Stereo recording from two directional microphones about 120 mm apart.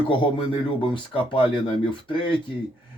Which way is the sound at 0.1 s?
45° left (ahead or behind).